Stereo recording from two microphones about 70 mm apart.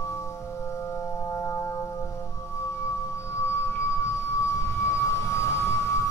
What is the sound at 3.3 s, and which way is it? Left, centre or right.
Music, left.